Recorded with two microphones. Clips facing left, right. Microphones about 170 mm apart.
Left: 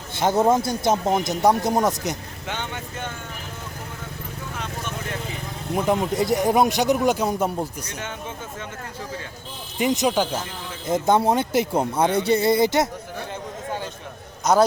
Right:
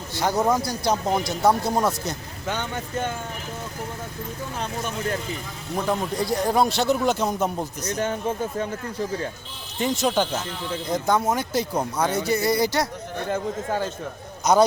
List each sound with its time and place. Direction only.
0.2 s speech: 25° left (ahead or behind)
2.5 s speech: 40° right (ahead or behind)
5.7 s speech: 20° left (ahead or behind)
7.9 s speech: 35° right (ahead or behind)
9.7 s speech: 15° left (ahead or behind)
10.8 s speech: 25° left (ahead or behind)
14.5 s a man's voice: centre (ahead or behind)